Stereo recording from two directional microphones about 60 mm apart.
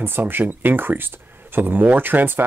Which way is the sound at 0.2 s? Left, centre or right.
Right.